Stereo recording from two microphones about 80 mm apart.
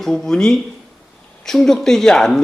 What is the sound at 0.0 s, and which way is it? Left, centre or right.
A man's voice, centre.